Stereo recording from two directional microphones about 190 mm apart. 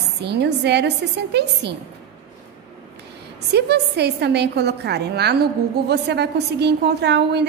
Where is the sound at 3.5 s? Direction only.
60° right (ahead or behind).